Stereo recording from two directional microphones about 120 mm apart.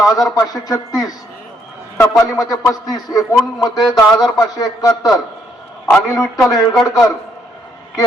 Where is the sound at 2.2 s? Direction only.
30° left (ahead or behind).